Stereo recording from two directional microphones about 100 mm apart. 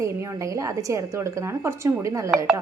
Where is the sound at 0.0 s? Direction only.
30° right (ahead or behind).